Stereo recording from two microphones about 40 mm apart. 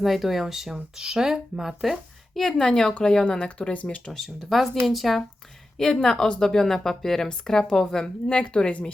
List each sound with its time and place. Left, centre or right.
0.0 s speech: centre
2.3 s speech: centre
2.6 s speech: centre
4.1 s speech: centre
5.7 s speech: centre